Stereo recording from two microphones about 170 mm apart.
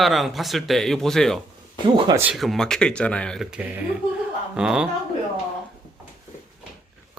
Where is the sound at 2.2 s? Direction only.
5° right (ahead or behind).